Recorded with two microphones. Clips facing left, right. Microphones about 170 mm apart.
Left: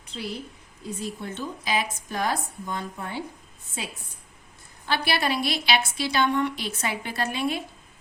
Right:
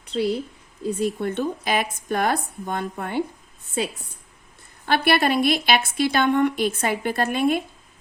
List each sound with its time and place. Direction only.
0.1 s a woman's voice: 65° right (ahead or behind)
4.9 s a woman's voice: 55° right (ahead or behind)